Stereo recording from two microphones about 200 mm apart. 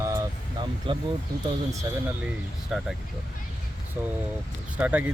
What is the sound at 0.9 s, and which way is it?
Speech, 25° right (ahead or behind).